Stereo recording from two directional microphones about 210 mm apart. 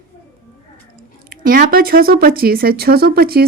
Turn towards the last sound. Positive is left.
turn(degrees=-45)  # may be behind; listen again after turning